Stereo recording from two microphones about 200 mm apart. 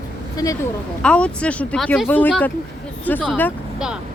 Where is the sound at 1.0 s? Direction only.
5° left (ahead or behind).